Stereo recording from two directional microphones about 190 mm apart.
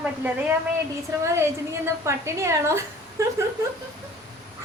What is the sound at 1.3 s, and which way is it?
A woman's voice, 15° right (ahead or behind).